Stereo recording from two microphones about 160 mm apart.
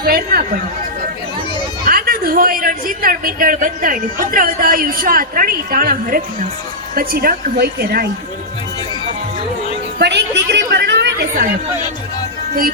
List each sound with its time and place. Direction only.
0.0 s speech: 65° right (ahead or behind)
1.8 s a man's voice: 65° right (ahead or behind)
10.0 s a woman's voice: 90° right